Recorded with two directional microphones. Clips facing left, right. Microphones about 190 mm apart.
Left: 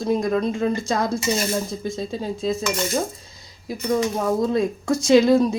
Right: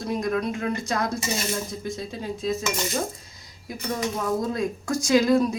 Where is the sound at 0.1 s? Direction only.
25° left (ahead or behind).